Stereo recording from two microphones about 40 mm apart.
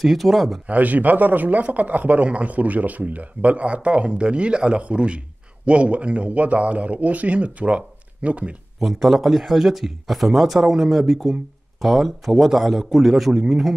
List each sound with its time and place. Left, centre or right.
0.0 s speech: centre
0.7 s speech: right
8.7 s speech: centre